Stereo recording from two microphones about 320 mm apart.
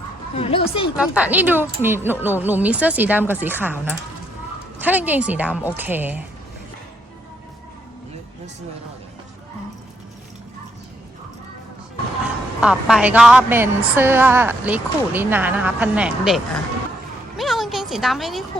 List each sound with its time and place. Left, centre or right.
0.3 s a woman's voice: centre
0.9 s speech: centre
12.2 s a woman's voice: centre
17.3 s a sound: centre